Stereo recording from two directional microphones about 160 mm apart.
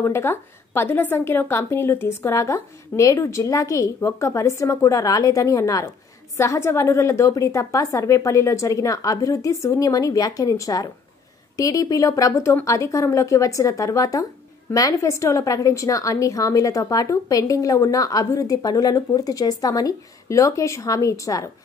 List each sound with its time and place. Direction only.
0.0 s a woman's voice: 15° left (ahead or behind)